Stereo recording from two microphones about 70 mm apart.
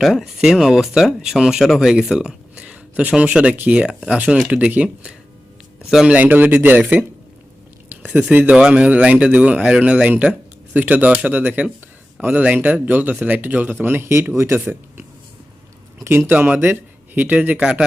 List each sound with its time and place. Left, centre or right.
0.0 s speech: centre
5.9 s speech: centre
6.1 s speech: right
8.3 s speech: right
8.5 s speech: centre; by 15.0 s right
16.0 s speech: right
16.3 s speech: right